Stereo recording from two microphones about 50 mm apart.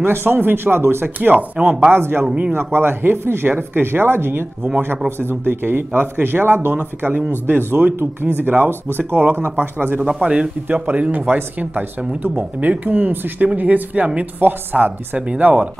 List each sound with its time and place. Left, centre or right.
0.0 s speech: right
1.3 s speech: right
1.9 s speech: right
10.2 s speech: right
10.7 s speech: right
14.4 s speech: right
15.1 s speech: right